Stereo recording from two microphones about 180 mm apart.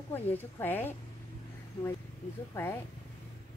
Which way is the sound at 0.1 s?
10° left (ahead or behind).